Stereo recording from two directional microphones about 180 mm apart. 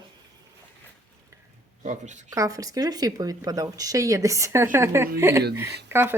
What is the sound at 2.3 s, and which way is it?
Speech, 20° right (ahead or behind).